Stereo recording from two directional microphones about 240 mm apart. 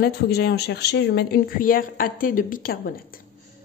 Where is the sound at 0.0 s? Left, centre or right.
Left.